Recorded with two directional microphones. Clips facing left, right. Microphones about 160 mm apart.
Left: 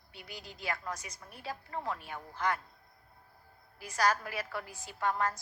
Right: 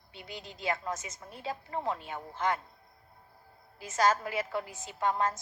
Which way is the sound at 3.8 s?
25° right (ahead or behind).